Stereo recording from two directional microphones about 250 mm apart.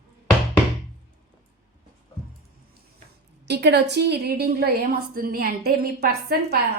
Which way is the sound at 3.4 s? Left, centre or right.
Right.